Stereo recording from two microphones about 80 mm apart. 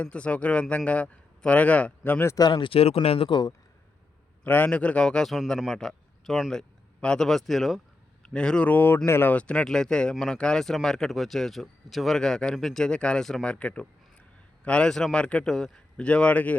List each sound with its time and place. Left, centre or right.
0.0 s speech: centre
3.2 s a man's voice: left
4.4 s a man's voice: left; by 7.8 s centre
8.2 s speech: centre; by 9.3 s left
9.3 s speech: centre